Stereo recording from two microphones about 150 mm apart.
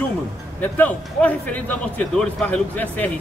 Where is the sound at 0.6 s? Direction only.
10° left (ahead or behind).